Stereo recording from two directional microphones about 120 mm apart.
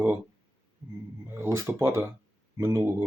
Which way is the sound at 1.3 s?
20° right (ahead or behind).